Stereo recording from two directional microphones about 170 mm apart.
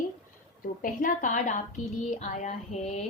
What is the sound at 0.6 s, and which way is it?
A woman's voice, 55° left (ahead or behind).